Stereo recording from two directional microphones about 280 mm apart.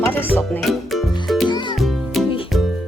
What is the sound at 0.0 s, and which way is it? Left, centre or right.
Music, centre.